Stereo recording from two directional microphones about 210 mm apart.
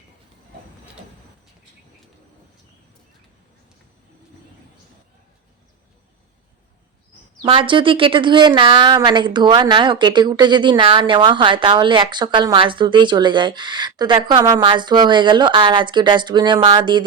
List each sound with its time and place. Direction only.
7.4 s speech: 25° right (ahead or behind)